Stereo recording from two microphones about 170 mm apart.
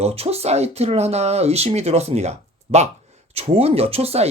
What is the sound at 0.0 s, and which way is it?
Speech, 35° right (ahead or behind).